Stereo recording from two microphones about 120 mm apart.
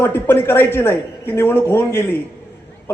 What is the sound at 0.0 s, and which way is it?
A man's voice, 20° left (ahead or behind).